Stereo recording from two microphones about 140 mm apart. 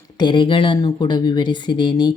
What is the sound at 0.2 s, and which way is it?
A woman's voice, 35° left (ahead or behind).